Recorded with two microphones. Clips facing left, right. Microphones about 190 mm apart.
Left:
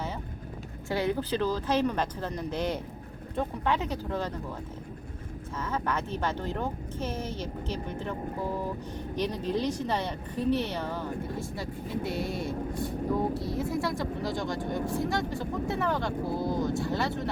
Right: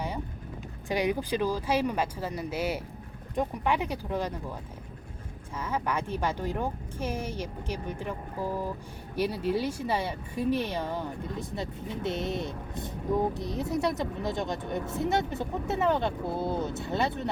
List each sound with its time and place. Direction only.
0.9 s speech: 15° right (ahead or behind)
5.5 s speech: 10° right (ahead or behind)